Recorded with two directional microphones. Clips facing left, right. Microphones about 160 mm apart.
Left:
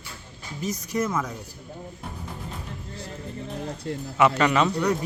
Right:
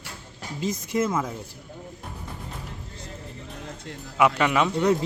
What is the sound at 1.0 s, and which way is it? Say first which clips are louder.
Speech: right 2 dB; 25° right (ahead or behind).